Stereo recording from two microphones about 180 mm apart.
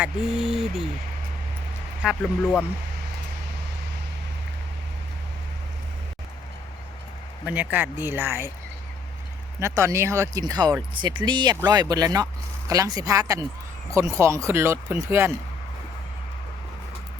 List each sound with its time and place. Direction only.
0.0 s speech: centre (ahead or behind)
2.0 s speech: 5° right (ahead or behind)
7.4 s speech: 10° right (ahead or behind)
9.6 s speech: 15° right (ahead or behind)